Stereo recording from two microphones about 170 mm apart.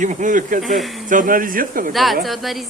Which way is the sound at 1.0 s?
50° right (ahead or behind).